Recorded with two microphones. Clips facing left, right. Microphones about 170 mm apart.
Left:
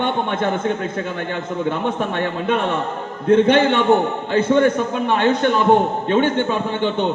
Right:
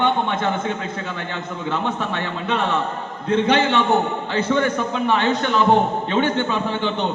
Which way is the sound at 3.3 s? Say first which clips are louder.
Left 4 dB; 50° left (ahead or behind).